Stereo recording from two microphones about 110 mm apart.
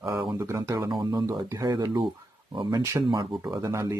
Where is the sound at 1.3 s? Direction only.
30° right (ahead or behind).